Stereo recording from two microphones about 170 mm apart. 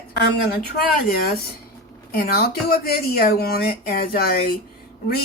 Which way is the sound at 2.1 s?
65° left (ahead or behind).